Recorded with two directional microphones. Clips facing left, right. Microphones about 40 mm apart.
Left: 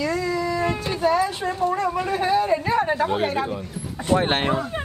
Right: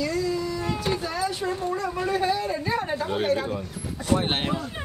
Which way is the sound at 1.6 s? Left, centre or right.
Left.